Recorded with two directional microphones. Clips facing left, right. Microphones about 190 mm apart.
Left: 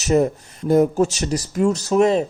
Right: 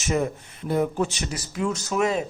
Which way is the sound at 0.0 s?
40° left (ahead or behind).